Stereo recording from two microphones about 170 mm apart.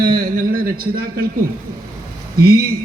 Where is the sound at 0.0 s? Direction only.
25° right (ahead or behind).